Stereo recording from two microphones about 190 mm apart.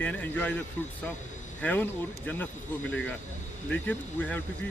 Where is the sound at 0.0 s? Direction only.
10° left (ahead or behind).